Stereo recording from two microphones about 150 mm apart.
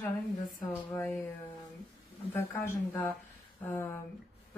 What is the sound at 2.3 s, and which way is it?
A woman's voice, 15° left (ahead or behind).